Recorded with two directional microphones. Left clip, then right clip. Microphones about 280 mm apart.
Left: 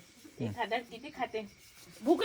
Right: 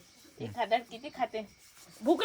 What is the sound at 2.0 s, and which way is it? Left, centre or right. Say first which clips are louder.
Rub: right 1 dB; right.